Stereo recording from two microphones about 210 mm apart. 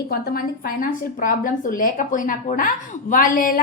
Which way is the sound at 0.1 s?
45° left (ahead or behind).